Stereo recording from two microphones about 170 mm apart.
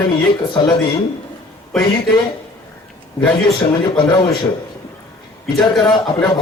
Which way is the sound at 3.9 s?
25° left (ahead or behind).